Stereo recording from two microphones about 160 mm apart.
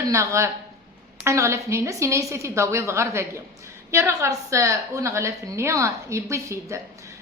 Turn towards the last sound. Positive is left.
turn(degrees=-20)  # may be behind; listen again after turning